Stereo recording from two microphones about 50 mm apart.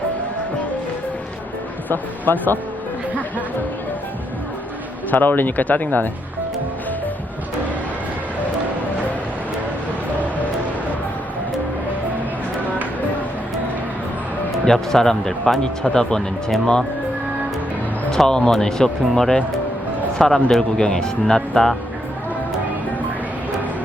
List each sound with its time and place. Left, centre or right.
1.9 s speech: left
5.1 s speech: left
14.6 s speech: centre
18.3 s speech: centre